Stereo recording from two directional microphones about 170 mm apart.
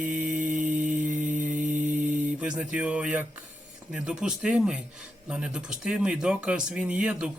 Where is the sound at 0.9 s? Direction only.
50° right (ahead or behind).